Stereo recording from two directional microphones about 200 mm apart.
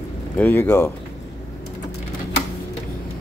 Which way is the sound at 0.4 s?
10° left (ahead or behind).